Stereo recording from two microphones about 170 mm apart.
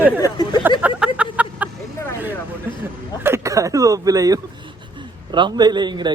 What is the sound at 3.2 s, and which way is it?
A man's voice, 15° right (ahead or behind).